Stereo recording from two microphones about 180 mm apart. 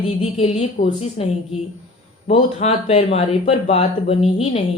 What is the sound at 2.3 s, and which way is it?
Speech, 35° left (ahead or behind).